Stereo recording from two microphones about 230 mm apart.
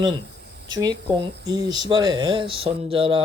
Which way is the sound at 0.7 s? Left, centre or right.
Centre.